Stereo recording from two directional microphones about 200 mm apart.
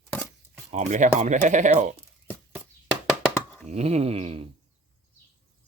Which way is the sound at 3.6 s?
35° right (ahead or behind).